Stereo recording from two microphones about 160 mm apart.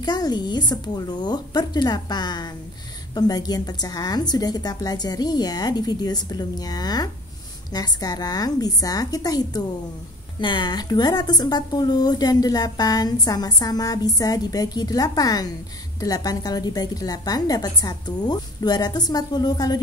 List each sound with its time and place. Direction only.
0.0 s a woman's voice: 25° left (ahead or behind)